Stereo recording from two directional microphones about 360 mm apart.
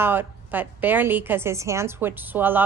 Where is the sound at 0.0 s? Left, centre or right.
Centre.